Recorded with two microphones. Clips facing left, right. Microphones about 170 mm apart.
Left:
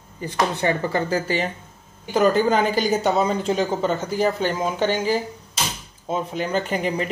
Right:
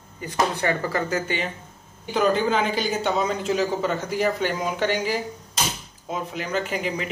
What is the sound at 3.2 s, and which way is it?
Speech, 30° left (ahead or behind).